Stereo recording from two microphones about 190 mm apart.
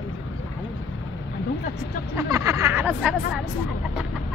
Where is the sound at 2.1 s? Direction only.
15° right (ahead or behind).